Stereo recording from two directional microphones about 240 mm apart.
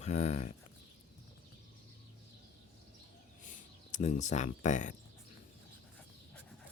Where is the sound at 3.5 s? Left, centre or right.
Left.